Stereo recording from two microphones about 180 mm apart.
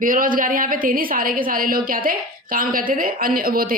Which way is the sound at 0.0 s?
50° right (ahead or behind).